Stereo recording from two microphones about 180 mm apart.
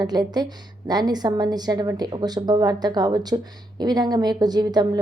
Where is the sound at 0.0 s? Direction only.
25° right (ahead or behind).